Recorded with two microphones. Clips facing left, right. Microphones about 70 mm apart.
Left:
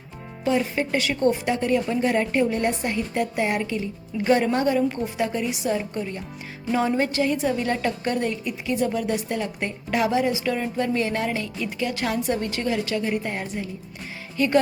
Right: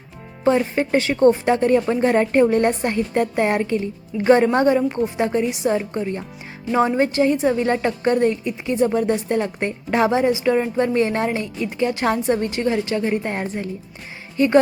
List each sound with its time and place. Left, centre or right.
0.4 s a woman's voice: right
14.3 s a woman's voice: right